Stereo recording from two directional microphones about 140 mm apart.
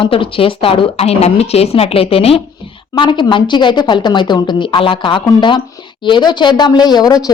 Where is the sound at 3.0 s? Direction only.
35° left (ahead or behind).